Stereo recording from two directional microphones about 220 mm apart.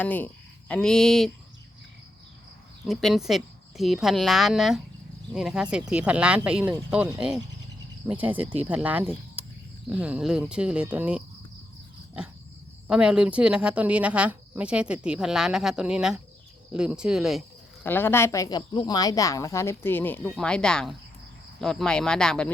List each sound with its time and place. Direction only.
0.0 s a woman's voice: 10° left (ahead or behind)
2.8 s speech: centre (ahead or behind)
12.9 s speech: 5° right (ahead or behind)
17.8 s a woman's voice: 10° left (ahead or behind)